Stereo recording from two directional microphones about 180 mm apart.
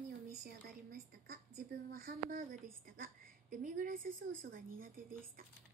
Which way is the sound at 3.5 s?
45° right (ahead or behind).